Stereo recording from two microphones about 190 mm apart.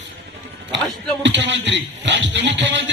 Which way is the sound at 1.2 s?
70° right (ahead or behind).